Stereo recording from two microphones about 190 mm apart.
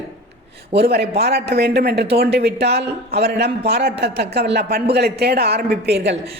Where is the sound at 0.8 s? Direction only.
60° right (ahead or behind).